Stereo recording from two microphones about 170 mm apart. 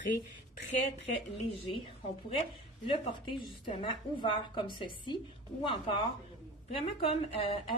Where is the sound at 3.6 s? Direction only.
30° left (ahead or behind).